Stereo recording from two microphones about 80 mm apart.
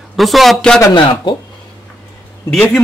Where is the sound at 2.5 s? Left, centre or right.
Centre.